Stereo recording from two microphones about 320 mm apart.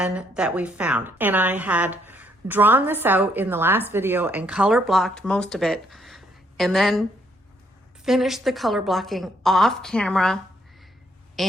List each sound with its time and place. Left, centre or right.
0.0 s a woman's voice: centre
8.0 s a woman's voice: centre
11.4 s a woman's voice: centre